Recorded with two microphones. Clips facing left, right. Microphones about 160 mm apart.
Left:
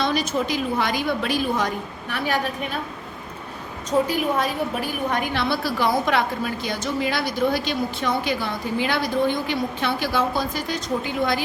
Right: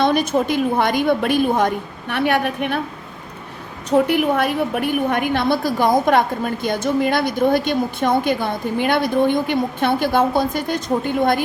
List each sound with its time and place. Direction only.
0.0 s a woman's voice: 55° right (ahead or behind)
3.8 s a woman's voice: 65° right (ahead or behind)